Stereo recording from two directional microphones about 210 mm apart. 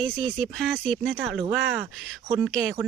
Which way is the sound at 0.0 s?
Centre (ahead or behind).